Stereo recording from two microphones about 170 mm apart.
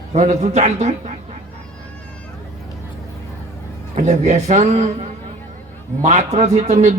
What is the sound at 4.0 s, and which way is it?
A man's voice, 40° right (ahead or behind).